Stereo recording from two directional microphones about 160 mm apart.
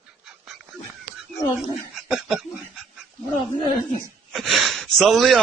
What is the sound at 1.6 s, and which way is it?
Speech, centre (ahead or behind).